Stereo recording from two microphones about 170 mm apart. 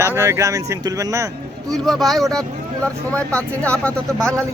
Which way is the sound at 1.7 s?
Centre (ahead or behind).